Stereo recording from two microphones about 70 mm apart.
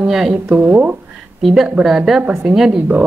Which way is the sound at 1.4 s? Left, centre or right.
Centre.